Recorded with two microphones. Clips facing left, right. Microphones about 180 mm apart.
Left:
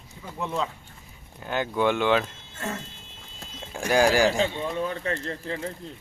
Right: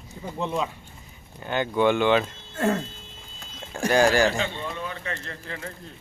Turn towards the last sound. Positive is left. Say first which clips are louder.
# left 5 dB
turn(degrees=30)  # may be behind; listen again after turning